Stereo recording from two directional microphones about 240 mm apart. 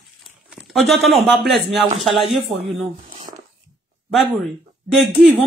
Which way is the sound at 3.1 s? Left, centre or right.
Centre.